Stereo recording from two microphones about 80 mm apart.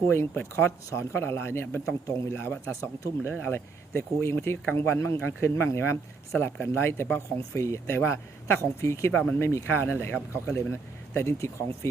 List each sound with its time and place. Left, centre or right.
0.1 s speech: left